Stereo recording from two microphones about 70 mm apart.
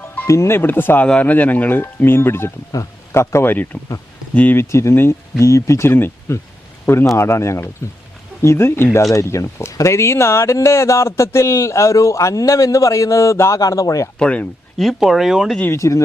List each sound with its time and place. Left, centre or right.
0.3 s speech: left
4.5 s a man's voice: left
9.1 s speech: left
14.2 s speech: centre
14.8 s speech: centre
15.7 s speech: left